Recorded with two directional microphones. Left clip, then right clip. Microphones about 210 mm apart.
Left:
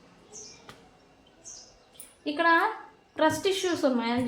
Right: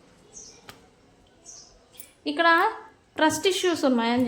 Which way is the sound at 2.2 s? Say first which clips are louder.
Right 3 dB; 40° right (ahead or behind).